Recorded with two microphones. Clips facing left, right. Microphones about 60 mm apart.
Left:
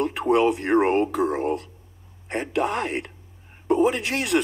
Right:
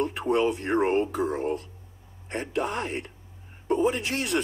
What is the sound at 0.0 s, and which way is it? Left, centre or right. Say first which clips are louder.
A man's voice: left 4 dB; left.